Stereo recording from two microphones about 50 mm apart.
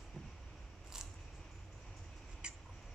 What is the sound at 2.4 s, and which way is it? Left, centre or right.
Rodents, centre.